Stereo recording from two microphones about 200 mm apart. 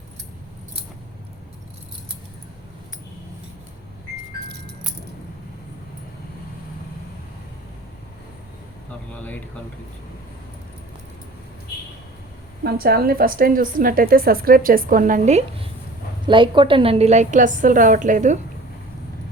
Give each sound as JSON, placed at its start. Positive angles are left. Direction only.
{"t": 4.4, "sound": "music", "side_deg": -55}
{"t": 12.6, "sound": "a woman's voice", "side_deg": -50}